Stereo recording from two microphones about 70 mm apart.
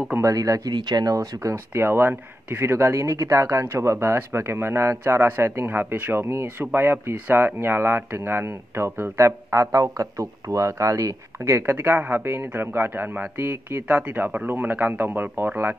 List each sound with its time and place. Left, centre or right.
0.2 s speech: right
1.1 s speech: right
13.4 s speech: right